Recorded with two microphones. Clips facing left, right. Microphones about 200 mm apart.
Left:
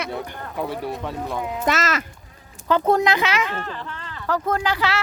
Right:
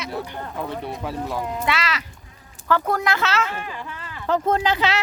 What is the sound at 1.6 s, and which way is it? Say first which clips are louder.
Speech: left 3 dB; 45° left (ahead or behind).